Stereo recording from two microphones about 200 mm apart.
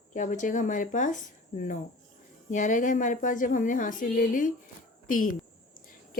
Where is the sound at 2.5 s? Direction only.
40° left (ahead or behind).